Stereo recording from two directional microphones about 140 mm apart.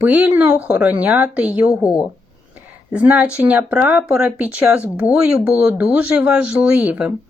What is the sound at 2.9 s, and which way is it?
Speech, 10° right (ahead or behind).